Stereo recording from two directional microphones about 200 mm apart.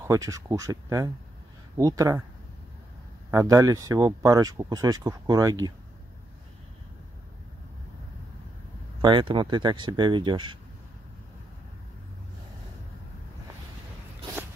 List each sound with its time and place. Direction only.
0.0 s speech: 15° right (ahead or behind)
3.3 s speech: 15° right (ahead or behind)
9.0 s speech: 25° right (ahead or behind)